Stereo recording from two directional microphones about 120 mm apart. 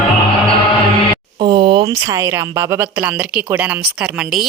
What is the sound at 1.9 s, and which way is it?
A woman's voice, 25° right (ahead or behind).